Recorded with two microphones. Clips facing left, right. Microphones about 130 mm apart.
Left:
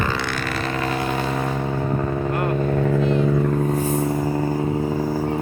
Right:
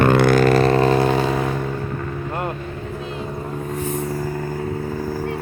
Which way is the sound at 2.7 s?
85° left.